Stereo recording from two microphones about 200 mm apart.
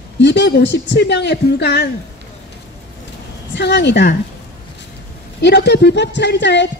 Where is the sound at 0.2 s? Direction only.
60° left (ahead or behind).